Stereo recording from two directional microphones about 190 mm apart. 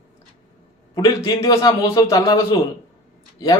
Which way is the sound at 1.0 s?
20° left (ahead or behind).